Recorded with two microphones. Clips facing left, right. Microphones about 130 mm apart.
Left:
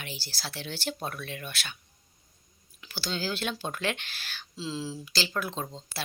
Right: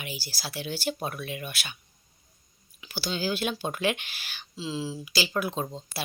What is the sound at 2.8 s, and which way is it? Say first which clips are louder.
Speech: right 2 dB; 10° right (ahead or behind).